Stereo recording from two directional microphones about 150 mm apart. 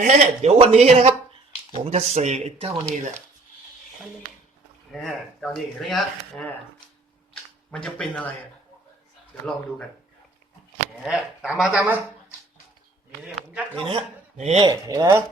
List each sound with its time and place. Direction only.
0.0 s speech: 50° right (ahead or behind)
2.9 s speech: 55° right (ahead or behind)
4.9 s speech: centre (ahead or behind)
7.7 s speech: 5° left (ahead or behind)
11.0 s speech: 5° right (ahead or behind)
13.2 s speech: 5° right (ahead or behind)
13.8 s a man's voice: 40° right (ahead or behind)
14.6 s speech: 25° right (ahead or behind)